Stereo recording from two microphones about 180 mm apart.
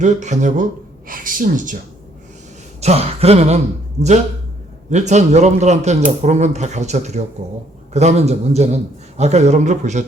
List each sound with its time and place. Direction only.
0.0 s a man's voice: 40° right (ahead or behind)
2.8 s a man's voice: 35° right (ahead or behind)
4.9 s a man's voice: 40° right (ahead or behind)